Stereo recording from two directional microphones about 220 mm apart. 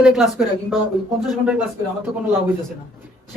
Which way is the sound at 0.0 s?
Centre (ahead or behind).